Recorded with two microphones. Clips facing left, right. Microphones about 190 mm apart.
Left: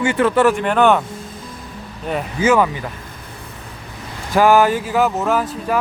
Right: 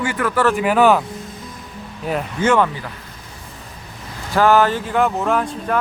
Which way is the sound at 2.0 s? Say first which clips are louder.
Left 1 dB; centre (ahead or behind).